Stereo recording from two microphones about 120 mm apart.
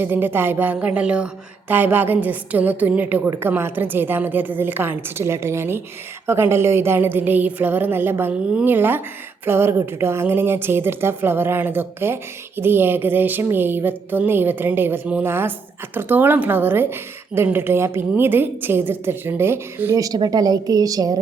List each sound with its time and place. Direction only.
0.0 s a woman's voice: 15° right (ahead or behind)